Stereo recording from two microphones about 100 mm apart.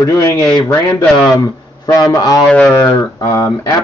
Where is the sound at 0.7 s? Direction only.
25° left (ahead or behind).